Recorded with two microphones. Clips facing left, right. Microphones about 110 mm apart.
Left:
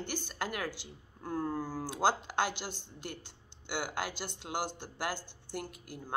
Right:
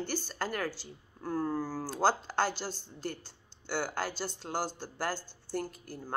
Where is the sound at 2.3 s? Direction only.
40° right (ahead or behind).